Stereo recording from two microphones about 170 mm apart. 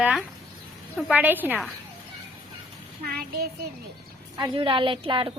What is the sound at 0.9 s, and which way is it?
Speech, 5° right (ahead or behind).